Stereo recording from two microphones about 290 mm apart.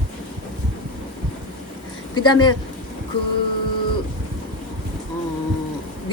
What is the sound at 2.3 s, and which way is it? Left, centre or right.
Speech, centre.